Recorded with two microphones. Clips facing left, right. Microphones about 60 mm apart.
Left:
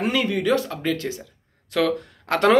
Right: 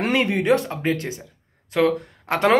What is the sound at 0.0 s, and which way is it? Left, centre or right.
Speech, right.